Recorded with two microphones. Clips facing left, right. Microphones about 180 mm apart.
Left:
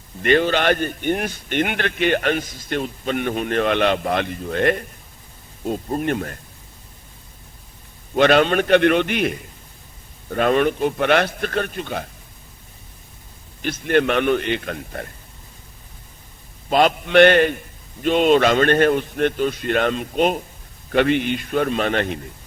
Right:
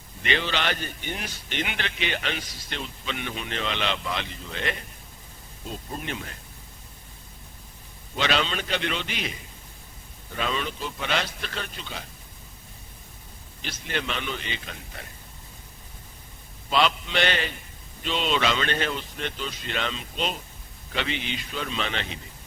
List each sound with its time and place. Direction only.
0.2 s a man's voice: 50° left (ahead or behind)
8.1 s a man's voice: 55° left (ahead or behind)
13.6 s a man's voice: 55° left (ahead or behind)
16.6 s a man's voice: 50° left (ahead or behind)